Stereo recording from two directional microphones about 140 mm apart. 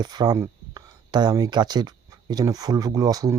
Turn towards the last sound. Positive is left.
turn(degrees=-25)  # may be behind; listen again after turning